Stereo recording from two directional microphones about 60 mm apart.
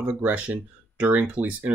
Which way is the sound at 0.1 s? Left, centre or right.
Right.